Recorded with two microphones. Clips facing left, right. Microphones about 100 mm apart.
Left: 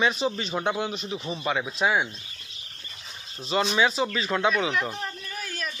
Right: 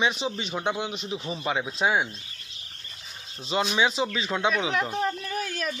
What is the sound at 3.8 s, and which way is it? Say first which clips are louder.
A man's voice: left 1 dB; 20° right (ahead or behind).